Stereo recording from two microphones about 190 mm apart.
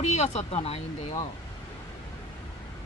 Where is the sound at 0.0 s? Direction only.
35° left (ahead or behind).